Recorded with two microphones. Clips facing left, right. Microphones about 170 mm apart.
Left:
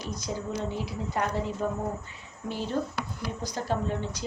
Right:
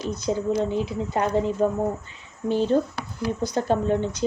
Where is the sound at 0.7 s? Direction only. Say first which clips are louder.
Right 7 dB; 25° right (ahead or behind).